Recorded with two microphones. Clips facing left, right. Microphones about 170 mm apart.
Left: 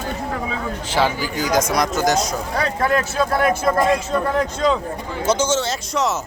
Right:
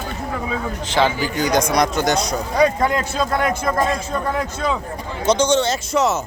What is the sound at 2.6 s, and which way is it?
Speech, 20° right (ahead or behind).